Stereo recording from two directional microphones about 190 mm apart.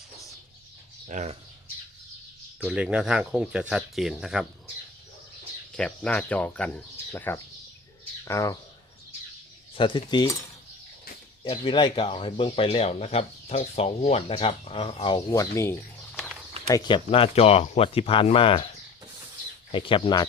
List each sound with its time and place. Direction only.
1.0 s speech: 40° right (ahead or behind)
2.6 s speech: 5° right (ahead or behind)
5.7 s speech: 5° left (ahead or behind)
9.7 s speech: 25° left (ahead or behind)
11.4 s speech: 25° left (ahead or behind)
16.1 s a sound: centre (ahead or behind)
16.6 s speech: 20° left (ahead or behind)
19.7 s speech: 25° left (ahead or behind)